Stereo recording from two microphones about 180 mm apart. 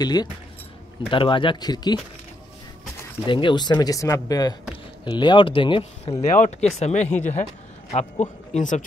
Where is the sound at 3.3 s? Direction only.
25° left (ahead or behind).